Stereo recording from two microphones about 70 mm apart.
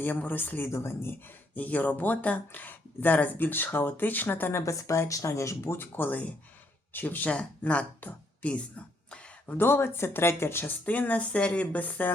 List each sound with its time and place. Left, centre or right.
0.0 s speech: left
1.5 s speech: left
4.6 s speech: left
9.0 s a sound: centre
9.5 s speech: left